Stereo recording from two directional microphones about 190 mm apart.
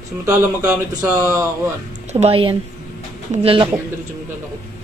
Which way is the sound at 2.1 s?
30° right (ahead or behind).